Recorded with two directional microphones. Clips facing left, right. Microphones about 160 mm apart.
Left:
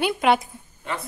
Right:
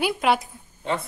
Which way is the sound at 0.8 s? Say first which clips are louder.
Right 4 dB; 25° right (ahead or behind).